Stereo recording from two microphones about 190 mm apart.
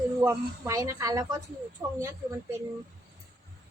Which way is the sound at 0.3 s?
15° right (ahead or behind).